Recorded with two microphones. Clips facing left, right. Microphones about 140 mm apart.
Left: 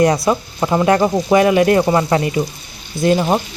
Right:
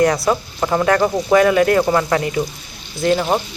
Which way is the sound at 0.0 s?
20° left (ahead or behind).